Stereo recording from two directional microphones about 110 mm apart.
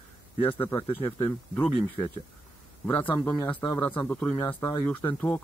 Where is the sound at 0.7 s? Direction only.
50° left (ahead or behind).